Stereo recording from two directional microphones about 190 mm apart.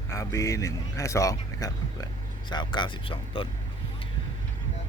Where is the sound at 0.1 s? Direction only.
15° left (ahead or behind).